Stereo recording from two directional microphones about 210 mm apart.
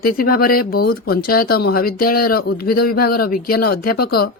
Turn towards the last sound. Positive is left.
turn(degrees=45)  # may be behind; listen again after turning